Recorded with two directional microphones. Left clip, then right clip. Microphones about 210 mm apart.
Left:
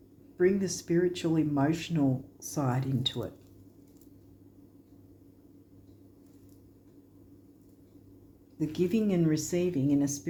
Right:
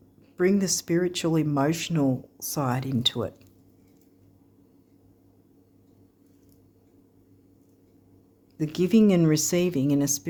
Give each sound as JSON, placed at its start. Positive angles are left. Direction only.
{"t": 0.3, "sound": "speech", "side_deg": -50}
{"t": 8.5, "sound": "speech", "side_deg": -55}